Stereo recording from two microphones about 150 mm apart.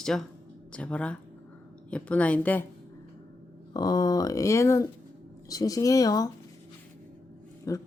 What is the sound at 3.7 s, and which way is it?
Speech, 25° left (ahead or behind).